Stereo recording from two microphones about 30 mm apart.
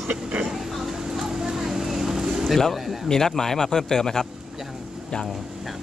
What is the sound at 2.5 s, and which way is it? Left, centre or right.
Speech, centre.